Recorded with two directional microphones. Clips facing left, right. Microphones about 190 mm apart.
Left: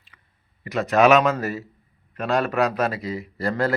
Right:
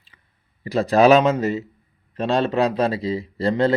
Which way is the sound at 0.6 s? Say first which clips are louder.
Right 2 dB; 30° right (ahead or behind).